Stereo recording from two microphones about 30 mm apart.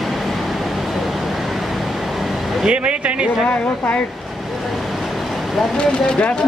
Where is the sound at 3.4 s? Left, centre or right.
Left.